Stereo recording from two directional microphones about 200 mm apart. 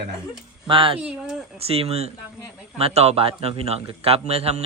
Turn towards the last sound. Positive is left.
turn(degrees=-30)  # may be behind; listen again after turning